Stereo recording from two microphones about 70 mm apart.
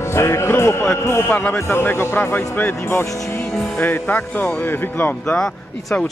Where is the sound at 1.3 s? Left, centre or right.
Left.